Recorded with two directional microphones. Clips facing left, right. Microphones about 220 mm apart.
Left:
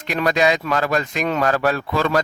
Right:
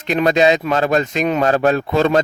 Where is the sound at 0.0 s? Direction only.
25° right (ahead or behind).